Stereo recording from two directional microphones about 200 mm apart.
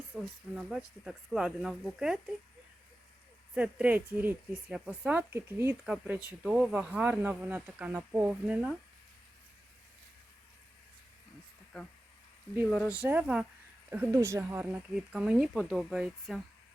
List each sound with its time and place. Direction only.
0.2 s speech: 5° right (ahead or behind)
3.5 s speech: 5° right (ahead or behind)
12.9 s speech: 10° right (ahead or behind)